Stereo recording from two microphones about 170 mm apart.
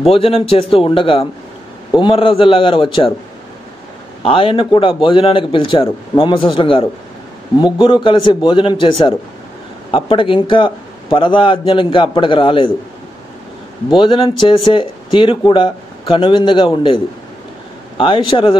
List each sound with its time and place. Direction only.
0.0 s a man's voice: 35° left (ahead or behind)
4.2 s a man's voice: 30° left (ahead or behind)
13.9 s a man's voice: 30° left (ahead or behind)